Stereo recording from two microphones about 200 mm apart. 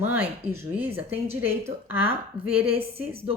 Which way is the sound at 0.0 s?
10° right (ahead or behind).